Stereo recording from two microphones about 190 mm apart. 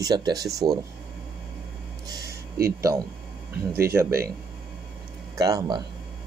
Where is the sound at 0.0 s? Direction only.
20° right (ahead or behind).